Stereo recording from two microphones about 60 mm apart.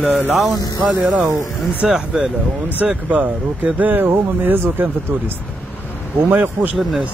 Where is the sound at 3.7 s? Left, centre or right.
Right.